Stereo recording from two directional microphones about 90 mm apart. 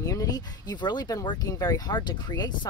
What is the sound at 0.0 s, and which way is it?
Speech, 40° left (ahead or behind).